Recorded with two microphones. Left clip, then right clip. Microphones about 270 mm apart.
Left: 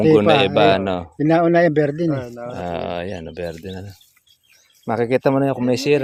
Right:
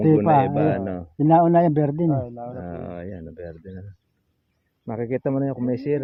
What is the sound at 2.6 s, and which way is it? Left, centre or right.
Speech, left.